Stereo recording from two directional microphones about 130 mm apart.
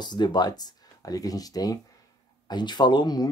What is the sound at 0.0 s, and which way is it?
Speech, 35° left (ahead or behind).